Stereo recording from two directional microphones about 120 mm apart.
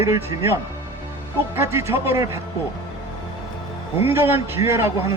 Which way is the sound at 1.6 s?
20° right (ahead or behind).